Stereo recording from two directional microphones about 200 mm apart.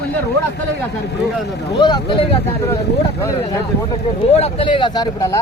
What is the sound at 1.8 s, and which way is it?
Speech, 25° left (ahead or behind).